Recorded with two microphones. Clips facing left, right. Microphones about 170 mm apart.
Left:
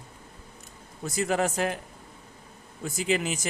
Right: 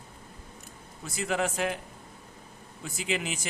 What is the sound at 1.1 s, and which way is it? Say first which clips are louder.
Speech: left 3 dB; 40° left (ahead or behind).